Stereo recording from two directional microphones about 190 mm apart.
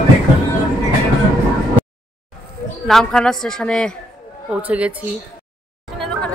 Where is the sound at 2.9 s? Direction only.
Centre (ahead or behind).